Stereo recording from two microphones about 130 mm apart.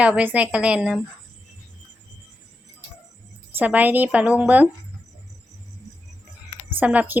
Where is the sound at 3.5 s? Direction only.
15° right (ahead or behind).